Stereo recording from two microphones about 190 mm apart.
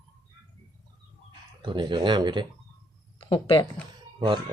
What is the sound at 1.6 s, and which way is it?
Speech, 25° right (ahead or behind).